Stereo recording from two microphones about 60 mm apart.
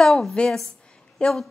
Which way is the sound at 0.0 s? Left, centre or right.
Centre.